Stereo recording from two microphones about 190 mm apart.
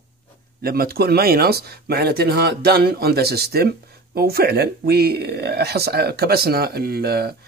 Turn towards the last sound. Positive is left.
turn(degrees=-55)  # may be behind; listen again after turning